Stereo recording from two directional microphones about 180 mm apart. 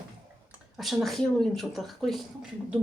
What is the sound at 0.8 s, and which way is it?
Speech, centre (ahead or behind).